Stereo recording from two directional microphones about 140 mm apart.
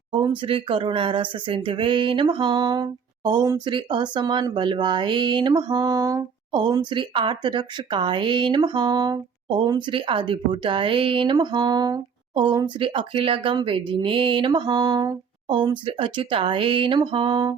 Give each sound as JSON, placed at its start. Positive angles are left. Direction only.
{"t": 0.1, "sound": "speech", "side_deg": -35}